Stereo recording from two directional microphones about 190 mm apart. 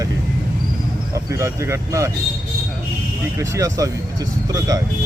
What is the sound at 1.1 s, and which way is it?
Speech, 15° right (ahead or behind).